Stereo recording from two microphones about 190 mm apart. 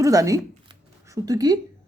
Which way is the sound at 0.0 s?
15° right (ahead or behind).